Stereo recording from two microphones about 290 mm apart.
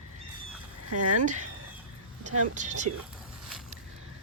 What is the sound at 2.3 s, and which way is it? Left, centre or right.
Speech, right.